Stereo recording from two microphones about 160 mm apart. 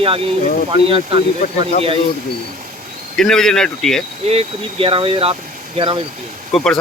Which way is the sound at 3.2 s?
5° left (ahead or behind).